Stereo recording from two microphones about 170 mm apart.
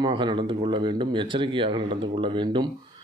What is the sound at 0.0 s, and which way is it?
A man's voice, 30° right (ahead or behind).